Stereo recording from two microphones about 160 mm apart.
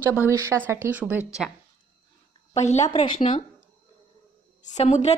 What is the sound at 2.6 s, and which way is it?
Speech, 45° left (ahead or behind).